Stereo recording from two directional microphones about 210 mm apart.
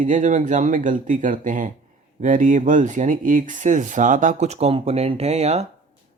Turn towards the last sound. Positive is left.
turn(degrees=-30)  # may be behind; listen again after turning